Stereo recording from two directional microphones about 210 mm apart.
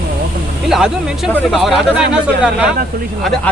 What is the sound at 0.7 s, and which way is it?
Speech, centre (ahead or behind).